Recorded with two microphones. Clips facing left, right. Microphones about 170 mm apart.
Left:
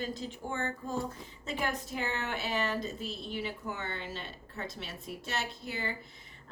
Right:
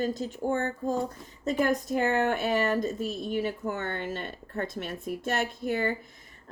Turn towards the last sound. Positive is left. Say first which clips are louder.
# right 10 dB
turn(degrees=-50)  # may be behind; listen again after turning